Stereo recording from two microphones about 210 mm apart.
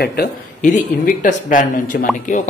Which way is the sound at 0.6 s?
35° left (ahead or behind).